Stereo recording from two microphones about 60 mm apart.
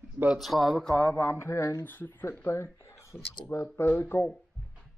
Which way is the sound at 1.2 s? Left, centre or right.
Left.